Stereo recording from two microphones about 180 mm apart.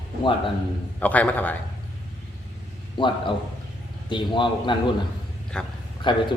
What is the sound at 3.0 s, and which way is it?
A man's voice, 25° left (ahead or behind).